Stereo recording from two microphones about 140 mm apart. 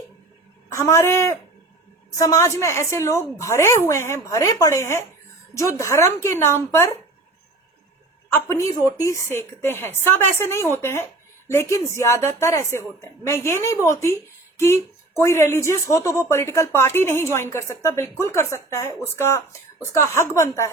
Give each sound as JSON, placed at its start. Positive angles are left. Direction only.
{"t": 0.7, "sound": "a woman's voice", "side_deg": 20}
{"t": 8.3, "sound": "a woman's voice", "side_deg": 20}